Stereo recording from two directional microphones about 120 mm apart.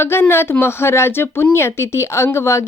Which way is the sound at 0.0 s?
20° left (ahead or behind).